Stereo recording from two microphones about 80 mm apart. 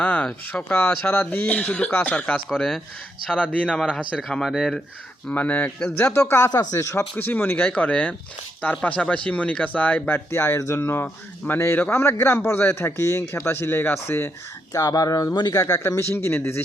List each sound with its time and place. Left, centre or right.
0.0 s a sound: centre
0.5 s speech: left
0.9 s speech: centre
2.6 s speech: centre
3.2 s speech: centre
5.3 s speech: left
6.1 s a man's voice: left
6.5 s speech: left
6.9 s speech: left
10.6 s a man's voice: left
14.7 s speech: left
15.5 s a man's voice: left
16.0 s a man's voice: left